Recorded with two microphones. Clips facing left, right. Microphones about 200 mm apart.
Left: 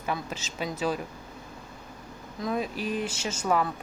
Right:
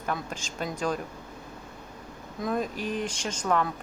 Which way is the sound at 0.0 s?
5° left (ahead or behind).